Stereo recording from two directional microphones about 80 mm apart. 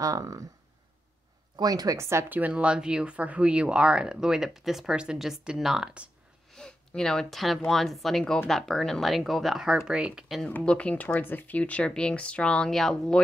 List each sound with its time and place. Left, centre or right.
0.0 s speech: right
1.6 s speech: right
2.0 s speech: right
2.2 s speech: centre
6.5 s speech: centre
10.6 s speech: centre